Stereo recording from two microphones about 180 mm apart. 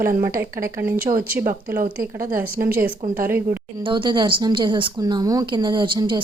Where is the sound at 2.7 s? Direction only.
15° right (ahead or behind).